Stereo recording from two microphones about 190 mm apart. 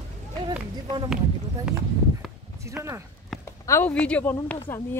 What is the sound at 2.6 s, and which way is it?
Speech, 15° right (ahead or behind).